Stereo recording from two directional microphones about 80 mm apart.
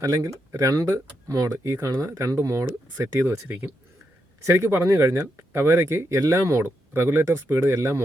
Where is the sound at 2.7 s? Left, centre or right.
Right.